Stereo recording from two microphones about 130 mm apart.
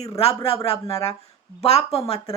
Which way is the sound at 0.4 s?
45° left (ahead or behind).